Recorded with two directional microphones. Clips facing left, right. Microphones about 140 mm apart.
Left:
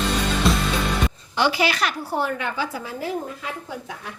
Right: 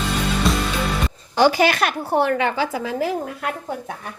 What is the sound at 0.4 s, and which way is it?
Music, centre (ahead or behind).